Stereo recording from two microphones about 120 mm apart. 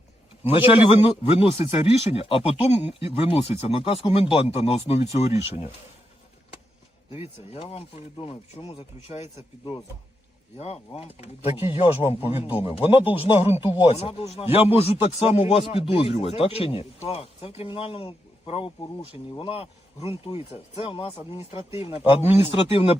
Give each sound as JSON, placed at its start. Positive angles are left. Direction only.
{"t": 0.4, "sound": "a man's voice", "side_deg": 50}
{"t": 7.1, "sound": "a man's voice", "side_deg": 55}
{"t": 10.6, "sound": "a man's voice", "side_deg": 60}